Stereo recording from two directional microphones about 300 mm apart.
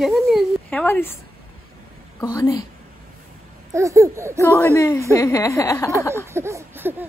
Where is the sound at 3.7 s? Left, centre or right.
Centre.